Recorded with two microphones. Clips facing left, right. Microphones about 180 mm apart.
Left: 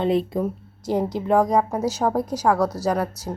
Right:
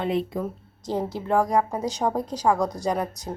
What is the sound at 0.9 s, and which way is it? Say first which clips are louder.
Speech: left 4 dB; 15° left (ahead or behind).